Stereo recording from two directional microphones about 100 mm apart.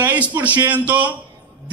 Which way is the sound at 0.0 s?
15° right (ahead or behind).